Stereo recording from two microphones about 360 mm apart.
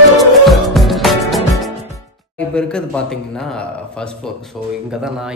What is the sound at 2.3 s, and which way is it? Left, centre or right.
Speech, centre.